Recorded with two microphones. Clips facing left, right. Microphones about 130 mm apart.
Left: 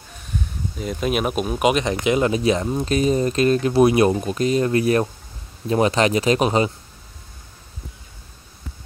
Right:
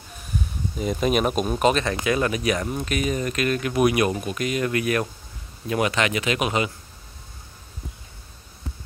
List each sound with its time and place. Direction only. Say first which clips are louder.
0.7 s speech: right 1 dB; centre (ahead or behind); by 6.7 s 35° left (ahead or behind)